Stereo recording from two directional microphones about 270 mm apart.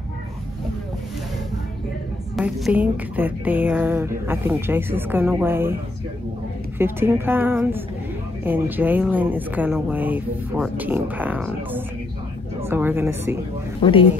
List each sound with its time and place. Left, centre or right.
2.3 s speech: centre
6.8 s speech: centre
13.8 s a woman's voice: centre